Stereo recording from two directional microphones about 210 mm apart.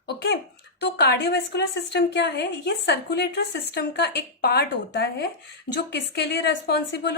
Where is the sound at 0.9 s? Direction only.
50° left (ahead or behind).